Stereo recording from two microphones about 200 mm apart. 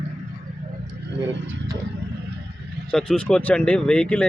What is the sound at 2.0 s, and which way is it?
Vehicle, 60° right (ahead or behind).